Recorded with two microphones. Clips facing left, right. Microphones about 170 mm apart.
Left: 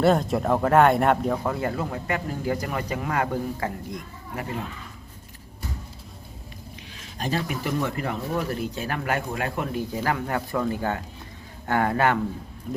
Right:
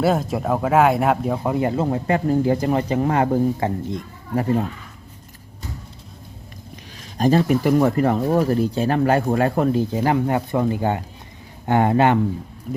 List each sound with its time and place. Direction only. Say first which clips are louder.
0.0 s speech: right 1 dB; centre (ahead or behind)
1.5 s speech: right 7 dB; 20° right (ahead or behind)
7.2 s speech: right 11 dB; 40° right (ahead or behind)
9.9 s speech: right 7 dB; 20° right (ahead or behind)
12.7 s a sound: right 3 dB; centre (ahead or behind)